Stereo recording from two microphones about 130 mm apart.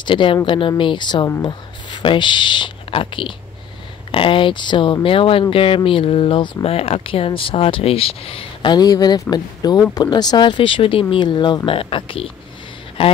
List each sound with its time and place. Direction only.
0.0 s speech: 40° left (ahead or behind)
8.7 s speech: 30° left (ahead or behind)